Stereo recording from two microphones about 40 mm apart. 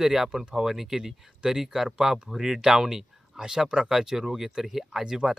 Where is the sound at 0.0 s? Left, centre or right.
Centre.